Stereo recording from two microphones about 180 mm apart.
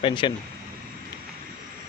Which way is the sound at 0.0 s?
25° left (ahead or behind).